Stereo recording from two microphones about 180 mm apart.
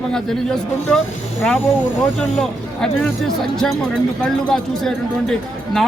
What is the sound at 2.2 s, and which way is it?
Speech, 5° left (ahead or behind).